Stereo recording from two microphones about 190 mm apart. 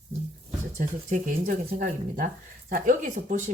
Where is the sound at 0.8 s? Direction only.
40° right (ahead or behind).